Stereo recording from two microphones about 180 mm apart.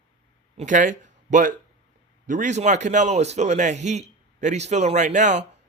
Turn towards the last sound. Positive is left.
turn(degrees=-40)  # may be behind; listen again after turning